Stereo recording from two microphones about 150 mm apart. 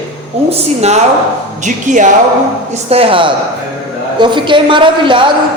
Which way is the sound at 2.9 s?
40° right (ahead or behind).